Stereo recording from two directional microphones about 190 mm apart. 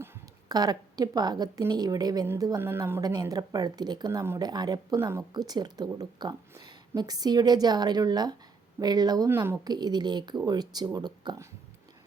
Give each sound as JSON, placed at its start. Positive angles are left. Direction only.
{"t": 0.0, "sound": "a woman's voice", "side_deg": -20}